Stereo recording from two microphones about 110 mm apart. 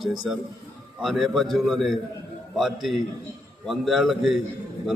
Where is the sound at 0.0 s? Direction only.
Centre (ahead or behind).